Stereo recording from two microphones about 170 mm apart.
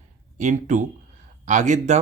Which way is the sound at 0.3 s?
45° right (ahead or behind).